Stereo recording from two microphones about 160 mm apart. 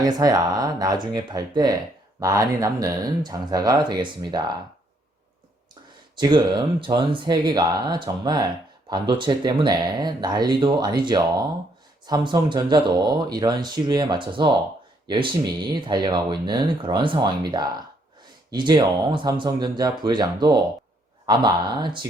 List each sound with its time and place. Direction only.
0.0 s speech: 20° right (ahead or behind)
6.1 s speech: 25° right (ahead or behind)